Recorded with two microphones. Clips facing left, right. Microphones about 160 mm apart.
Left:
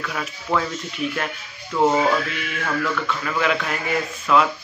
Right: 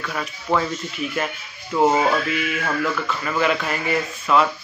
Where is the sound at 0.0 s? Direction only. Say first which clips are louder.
Even; centre (ahead or behind).